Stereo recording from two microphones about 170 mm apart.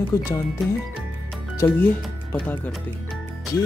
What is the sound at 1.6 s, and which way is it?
Speech, 15° left (ahead or behind).